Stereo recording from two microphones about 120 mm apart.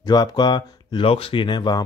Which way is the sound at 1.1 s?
50° left (ahead or behind).